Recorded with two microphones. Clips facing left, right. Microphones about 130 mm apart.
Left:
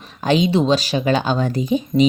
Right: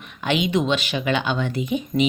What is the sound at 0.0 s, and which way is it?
A woman's voice, 35° left (ahead or behind).